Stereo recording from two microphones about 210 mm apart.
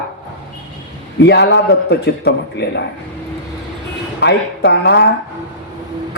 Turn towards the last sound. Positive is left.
turn(degrees=55)  # may be behind; listen again after turning